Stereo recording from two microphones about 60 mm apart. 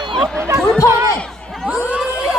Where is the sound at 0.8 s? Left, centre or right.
Right.